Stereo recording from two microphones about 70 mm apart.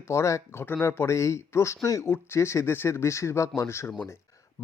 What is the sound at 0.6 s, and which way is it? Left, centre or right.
Speech, left.